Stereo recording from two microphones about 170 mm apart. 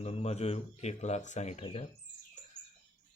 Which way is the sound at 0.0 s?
40° left (ahead or behind).